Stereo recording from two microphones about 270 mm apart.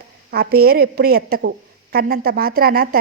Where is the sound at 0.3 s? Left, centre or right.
Right.